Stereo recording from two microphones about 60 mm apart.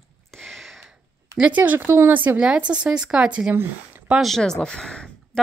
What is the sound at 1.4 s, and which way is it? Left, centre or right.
Speech, right.